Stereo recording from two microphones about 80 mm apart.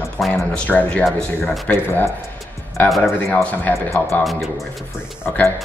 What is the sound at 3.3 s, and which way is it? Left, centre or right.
Speech, left.